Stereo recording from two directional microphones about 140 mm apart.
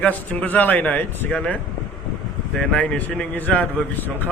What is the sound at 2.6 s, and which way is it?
Speech, 10° left (ahead or behind).